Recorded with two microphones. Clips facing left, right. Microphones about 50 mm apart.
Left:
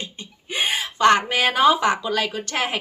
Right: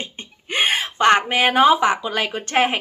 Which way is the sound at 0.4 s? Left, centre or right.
Right.